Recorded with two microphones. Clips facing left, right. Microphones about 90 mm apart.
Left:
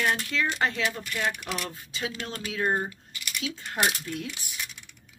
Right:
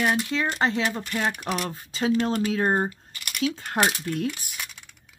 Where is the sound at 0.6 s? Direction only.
30° right (ahead or behind); by 4.6 s 50° right (ahead or behind).